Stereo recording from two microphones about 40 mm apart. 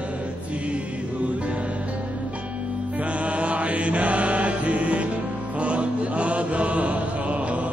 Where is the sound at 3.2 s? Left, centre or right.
Right.